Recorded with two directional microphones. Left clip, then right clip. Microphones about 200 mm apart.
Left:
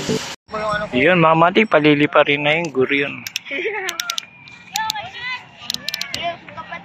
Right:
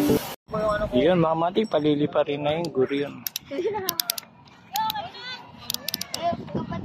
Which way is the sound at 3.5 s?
55° right (ahead or behind).